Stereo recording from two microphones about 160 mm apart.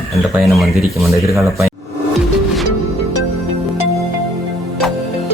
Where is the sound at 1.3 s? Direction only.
20° right (ahead or behind).